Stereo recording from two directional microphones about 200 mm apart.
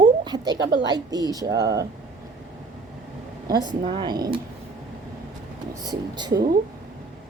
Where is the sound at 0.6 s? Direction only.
55° right (ahead or behind).